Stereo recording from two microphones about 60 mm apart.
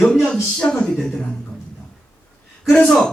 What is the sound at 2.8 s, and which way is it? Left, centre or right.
Speech, centre.